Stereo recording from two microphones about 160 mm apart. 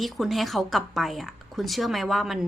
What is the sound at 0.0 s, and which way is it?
A woman's voice, centre (ahead or behind).